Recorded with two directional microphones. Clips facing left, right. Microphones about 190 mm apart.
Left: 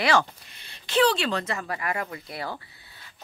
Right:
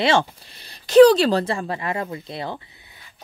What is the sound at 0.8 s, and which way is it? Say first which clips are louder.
Speech: right 12 dB; 40° right (ahead or behind).